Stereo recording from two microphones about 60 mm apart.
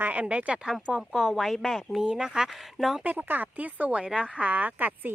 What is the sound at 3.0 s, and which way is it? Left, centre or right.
Speech, right.